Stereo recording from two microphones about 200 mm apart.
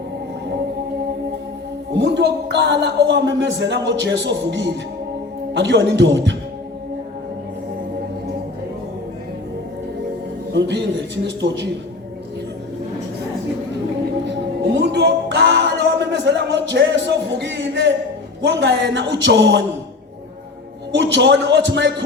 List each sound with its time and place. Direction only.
1.9 s a man's voice: 60° right (ahead or behind)
10.5 s a man's voice: 60° right (ahead or behind)
14.6 s a sound: 55° right (ahead or behind)
18.4 s a man's voice: 60° right (ahead or behind)
20.9 s a man's voice: 60° right (ahead or behind)